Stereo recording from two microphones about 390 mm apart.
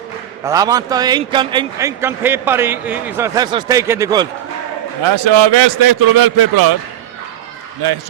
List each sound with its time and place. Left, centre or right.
0.4 s a man's voice: centre
5.0 s a man's voice: right
5.9 s a man's voice: right